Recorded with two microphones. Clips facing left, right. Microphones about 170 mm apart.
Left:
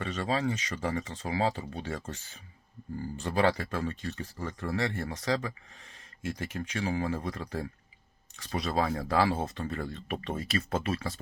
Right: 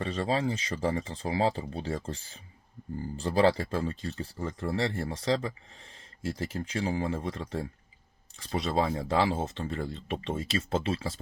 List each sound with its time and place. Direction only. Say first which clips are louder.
0.0 s speech: right 2 dB; 30° right (ahead or behind)